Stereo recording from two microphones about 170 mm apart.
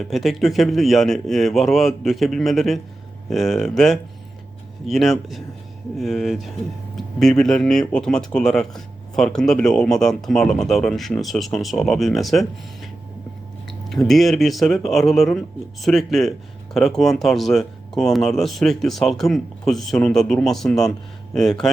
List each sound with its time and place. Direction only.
0.0 s speech: centre (ahead or behind)